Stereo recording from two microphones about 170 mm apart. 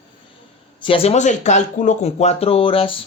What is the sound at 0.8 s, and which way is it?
Speech, 35° left (ahead or behind).